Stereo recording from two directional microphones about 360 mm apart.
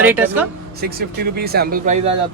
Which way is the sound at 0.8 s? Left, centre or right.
Right.